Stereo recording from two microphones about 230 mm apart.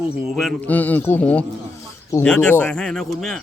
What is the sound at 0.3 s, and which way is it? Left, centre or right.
A man's voice, centre.